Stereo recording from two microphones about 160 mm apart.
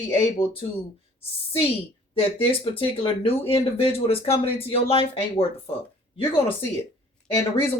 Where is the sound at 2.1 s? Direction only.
35° left (ahead or behind).